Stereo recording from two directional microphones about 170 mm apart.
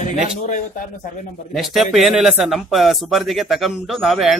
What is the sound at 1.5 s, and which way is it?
A man's voice, centre (ahead or behind).